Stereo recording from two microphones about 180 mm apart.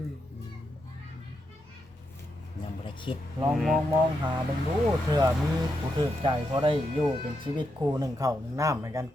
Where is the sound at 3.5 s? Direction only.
Centre (ahead or behind).